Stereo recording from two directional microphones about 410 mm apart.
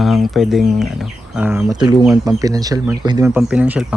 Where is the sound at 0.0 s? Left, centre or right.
Centre.